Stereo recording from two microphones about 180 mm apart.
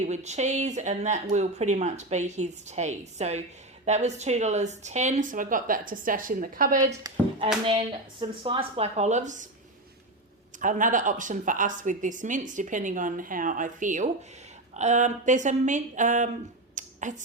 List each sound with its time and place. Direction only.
0.0 s speech: 40° right (ahead or behind)
7.0 s speech: 30° right (ahead or behind)
10.6 s speech: 45° right (ahead or behind)
16.7 s finger snapping: 45° right (ahead or behind)